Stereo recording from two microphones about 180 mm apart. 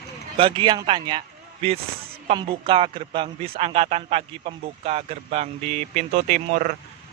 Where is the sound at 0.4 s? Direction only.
30° right (ahead or behind).